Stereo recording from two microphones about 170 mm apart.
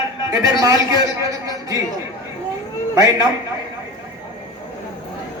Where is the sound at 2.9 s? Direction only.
20° right (ahead or behind).